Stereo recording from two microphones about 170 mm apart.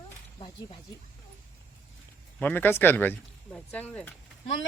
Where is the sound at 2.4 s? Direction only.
10° left (ahead or behind).